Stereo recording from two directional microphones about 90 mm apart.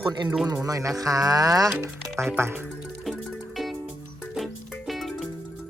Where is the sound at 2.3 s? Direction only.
20° right (ahead or behind).